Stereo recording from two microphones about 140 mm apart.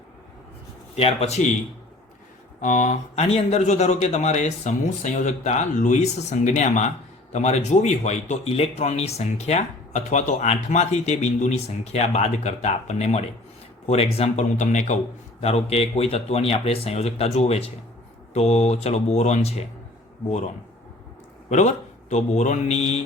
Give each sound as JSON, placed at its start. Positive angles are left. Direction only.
{"t": 0.9, "sound": "speech", "side_deg": 45}
{"t": 2.6, "sound": "speech", "side_deg": 60}
{"t": 22.1, "sound": "speech", "side_deg": 55}